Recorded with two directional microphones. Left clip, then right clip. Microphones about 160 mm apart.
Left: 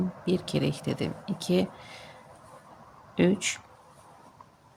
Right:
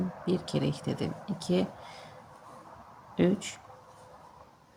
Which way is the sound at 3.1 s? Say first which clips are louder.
Left 3 dB; 35° left (ahead or behind).